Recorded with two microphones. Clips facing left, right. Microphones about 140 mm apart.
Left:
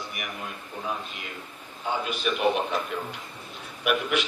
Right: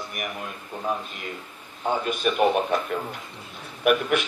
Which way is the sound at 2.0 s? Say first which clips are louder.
Right 4 dB; 50° right (ahead or behind).